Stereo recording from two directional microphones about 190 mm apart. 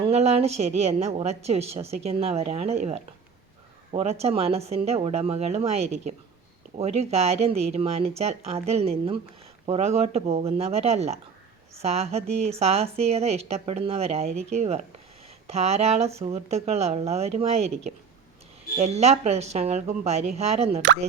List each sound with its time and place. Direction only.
0.0 s a woman's voice: 35° right (ahead or behind)